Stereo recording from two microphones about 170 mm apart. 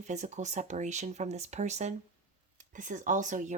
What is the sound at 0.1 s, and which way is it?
Speech, 45° right (ahead or behind).